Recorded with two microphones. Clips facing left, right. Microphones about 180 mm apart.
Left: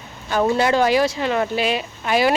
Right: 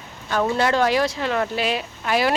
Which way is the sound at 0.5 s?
5° left (ahead or behind).